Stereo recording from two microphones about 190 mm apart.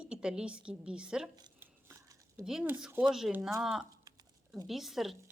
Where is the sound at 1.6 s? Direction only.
15° right (ahead or behind).